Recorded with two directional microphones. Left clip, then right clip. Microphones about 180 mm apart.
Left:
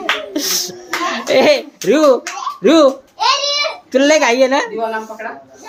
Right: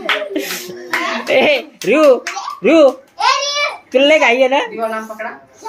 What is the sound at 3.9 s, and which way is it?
Speech, 10° left (ahead or behind).